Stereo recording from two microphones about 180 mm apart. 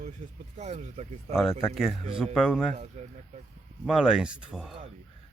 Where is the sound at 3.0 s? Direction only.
35° right (ahead or behind).